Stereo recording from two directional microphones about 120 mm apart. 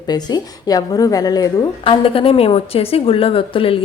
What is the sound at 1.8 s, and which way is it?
A woman's voice, 50° left (ahead or behind).